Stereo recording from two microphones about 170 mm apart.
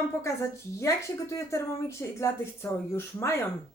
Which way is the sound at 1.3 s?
15° left (ahead or behind).